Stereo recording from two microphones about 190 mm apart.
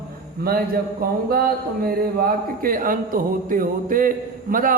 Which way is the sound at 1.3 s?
50° right (ahead or behind).